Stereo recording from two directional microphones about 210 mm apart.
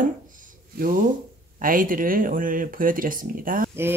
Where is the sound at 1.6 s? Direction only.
40° right (ahead or behind).